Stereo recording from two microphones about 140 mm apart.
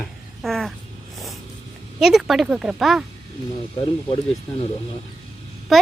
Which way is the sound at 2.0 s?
5° right (ahead or behind).